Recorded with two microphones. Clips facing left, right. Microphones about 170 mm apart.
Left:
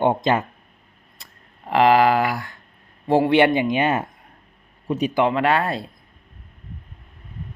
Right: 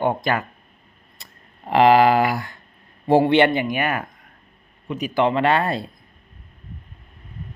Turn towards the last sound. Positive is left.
turn(degrees=5)  # may be behind; listen again after turning